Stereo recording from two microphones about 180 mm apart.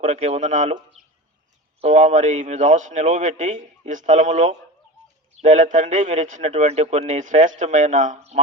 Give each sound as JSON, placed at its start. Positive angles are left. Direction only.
{"t": 0.0, "sound": "speech", "side_deg": -40}
{"t": 1.8, "sound": "speech", "side_deg": -40}